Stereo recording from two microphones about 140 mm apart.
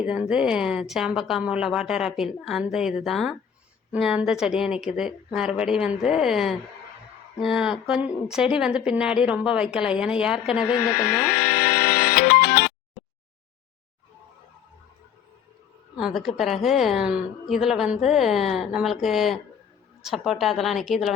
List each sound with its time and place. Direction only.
0.0 s a woman's voice: 5° right (ahead or behind)
10.9 s speech: 90° left
16.0 s a woman's voice: centre (ahead or behind)